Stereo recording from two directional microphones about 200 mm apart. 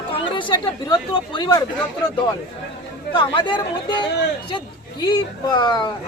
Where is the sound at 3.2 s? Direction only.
25° left (ahead or behind).